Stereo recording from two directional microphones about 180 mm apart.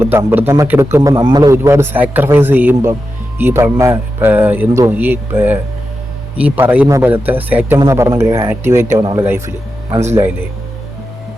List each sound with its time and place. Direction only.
0.0 s a man's voice: 10° right (ahead or behind)